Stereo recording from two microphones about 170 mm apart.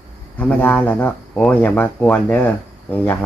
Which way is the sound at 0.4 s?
10° left (ahead or behind).